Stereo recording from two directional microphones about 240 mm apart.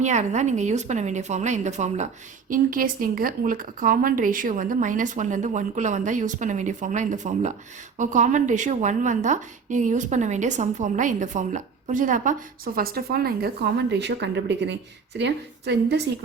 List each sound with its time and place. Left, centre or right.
0.0 s a woman's voice: right